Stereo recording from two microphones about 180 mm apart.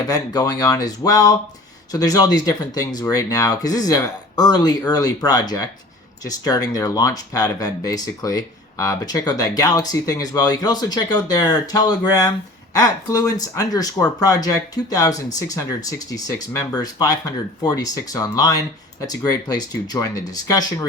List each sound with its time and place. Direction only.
0.1 s speech: 20° left (ahead or behind)